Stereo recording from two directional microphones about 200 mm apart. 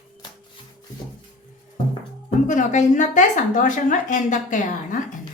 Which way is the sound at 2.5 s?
40° left (ahead or behind).